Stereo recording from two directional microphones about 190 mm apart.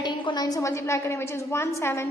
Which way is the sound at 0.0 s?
20° left (ahead or behind).